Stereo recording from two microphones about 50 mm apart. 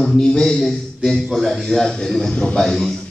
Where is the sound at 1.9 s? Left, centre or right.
Centre.